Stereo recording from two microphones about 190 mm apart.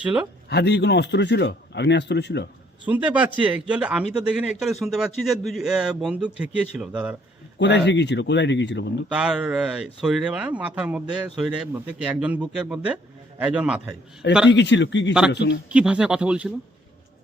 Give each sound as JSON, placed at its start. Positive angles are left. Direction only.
{"t": 0.0, "sound": "speech", "side_deg": -5}
{"t": 0.4, "sound": "speech", "side_deg": 60}
{"t": 2.8, "sound": "speech", "side_deg": -10}
{"t": 7.6, "sound": "speech", "side_deg": 65}
{"t": 9.0, "sound": "speech", "side_deg": -5}
{"t": 14.5, "sound": "speech", "side_deg": 70}
{"t": 15.7, "sound": "speech", "side_deg": -5}